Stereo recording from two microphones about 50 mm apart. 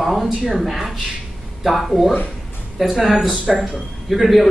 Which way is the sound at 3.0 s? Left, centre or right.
Centre.